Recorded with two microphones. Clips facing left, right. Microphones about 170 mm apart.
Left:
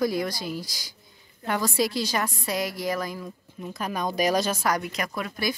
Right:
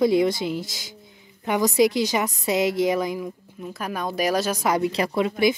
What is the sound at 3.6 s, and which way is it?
A woman's voice, 5° right (ahead or behind).